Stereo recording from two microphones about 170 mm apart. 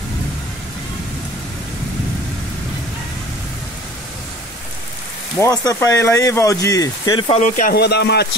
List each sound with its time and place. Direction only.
5.4 s speech: 20° left (ahead or behind)
7.2 s speech: 45° left (ahead or behind)
7.7 s a man's voice: 75° left (ahead or behind)